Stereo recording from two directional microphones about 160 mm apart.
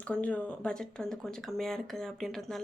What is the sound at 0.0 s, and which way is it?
Speech, 10° left (ahead or behind).